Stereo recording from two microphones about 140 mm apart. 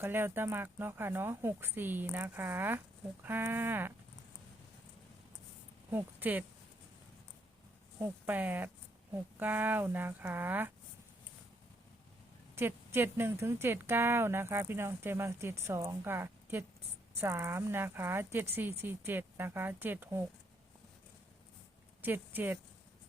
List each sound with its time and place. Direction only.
0.0 s speech: 15° right (ahead or behind)
5.9 s speech: 15° right (ahead or behind)
7.9 s speech: 15° right (ahead or behind)
12.5 s speech: 15° right (ahead or behind)
22.0 s speech: 15° right (ahead or behind)